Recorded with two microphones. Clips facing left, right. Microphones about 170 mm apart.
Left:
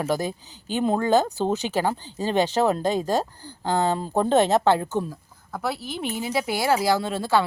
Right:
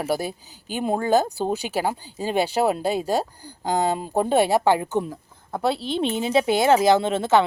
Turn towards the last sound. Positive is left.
turn(degrees=-20)  # may be behind; listen again after turning